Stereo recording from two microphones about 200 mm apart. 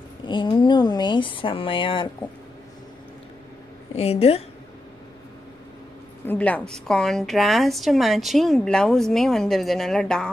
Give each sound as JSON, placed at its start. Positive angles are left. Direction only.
{"t": 0.2, "sound": "speech", "side_deg": 25}
{"t": 3.9, "sound": "a woman's voice", "side_deg": 30}
{"t": 6.2, "sound": "a woman's voice", "side_deg": 10}